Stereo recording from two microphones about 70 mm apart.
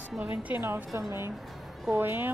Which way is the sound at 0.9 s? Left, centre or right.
Right.